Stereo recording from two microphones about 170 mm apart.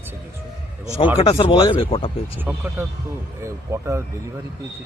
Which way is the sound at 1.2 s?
30° left (ahead or behind).